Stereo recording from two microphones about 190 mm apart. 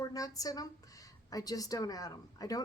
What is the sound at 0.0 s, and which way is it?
A woman's voice, 20° left (ahead or behind).